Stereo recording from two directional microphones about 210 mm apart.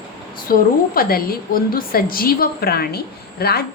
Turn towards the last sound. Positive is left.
turn(degrees=50)  # may be behind; listen again after turning